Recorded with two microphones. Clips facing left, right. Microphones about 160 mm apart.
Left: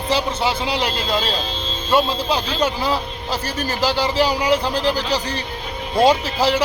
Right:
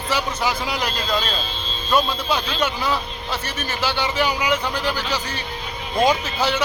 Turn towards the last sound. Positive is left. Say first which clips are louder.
# left 4 dB
turn(degrees=35)  # may be behind; listen again after turning